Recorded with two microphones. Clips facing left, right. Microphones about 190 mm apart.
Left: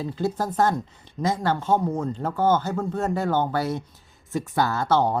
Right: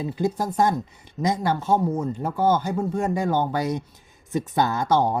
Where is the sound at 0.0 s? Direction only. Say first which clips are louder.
Right 1 dB; 15° right (ahead or behind).